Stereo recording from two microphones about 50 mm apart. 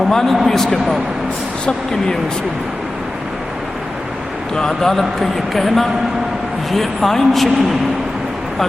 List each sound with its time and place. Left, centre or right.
0.1 s a man's voice: centre
4.5 s speech: centre